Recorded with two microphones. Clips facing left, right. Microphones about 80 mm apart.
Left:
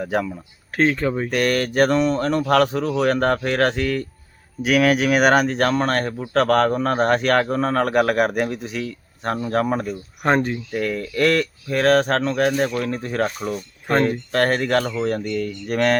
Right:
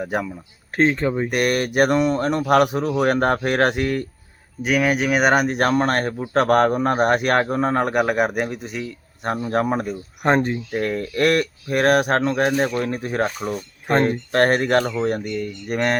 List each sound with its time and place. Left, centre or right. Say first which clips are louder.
0.0 s speech: left 2 dB; centre
0.8 s speech: right 1 dB; right
4.6 s speech: left 2 dB; centre
5.5 s speech: right 1 dB; right; by 8.8 s centre
8.8 s speech: left 1 dB; centre